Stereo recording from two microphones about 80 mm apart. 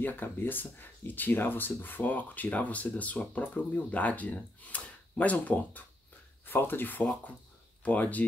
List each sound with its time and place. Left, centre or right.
0.0 s speech: left